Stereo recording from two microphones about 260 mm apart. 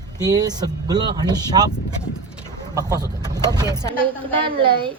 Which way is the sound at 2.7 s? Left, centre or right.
Centre.